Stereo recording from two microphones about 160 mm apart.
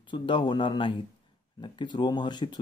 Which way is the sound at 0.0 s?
30° left (ahead or behind).